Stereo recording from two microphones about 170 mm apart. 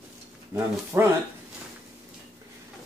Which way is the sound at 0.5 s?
15° right (ahead or behind).